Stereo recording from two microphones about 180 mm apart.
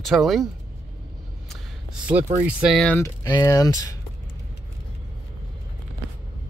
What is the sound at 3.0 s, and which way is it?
Speech, 20° left (ahead or behind).